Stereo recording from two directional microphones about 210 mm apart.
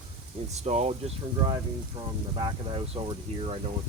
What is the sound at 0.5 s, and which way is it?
Speech, 30° right (ahead or behind).